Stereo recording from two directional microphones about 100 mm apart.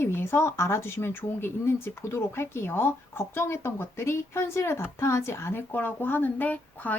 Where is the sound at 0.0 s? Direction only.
25° left (ahead or behind).